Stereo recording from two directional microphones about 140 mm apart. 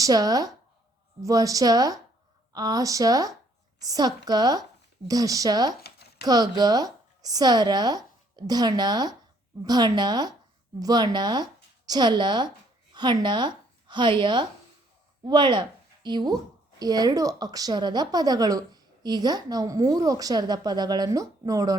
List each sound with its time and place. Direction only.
0.0 s a woman's voice: 25° right (ahead or behind)